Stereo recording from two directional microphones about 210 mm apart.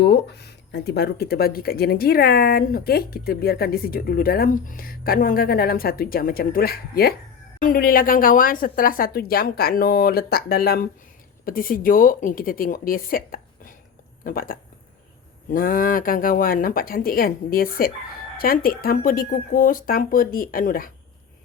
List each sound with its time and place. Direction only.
0.0 s speech: 50° left (ahead or behind)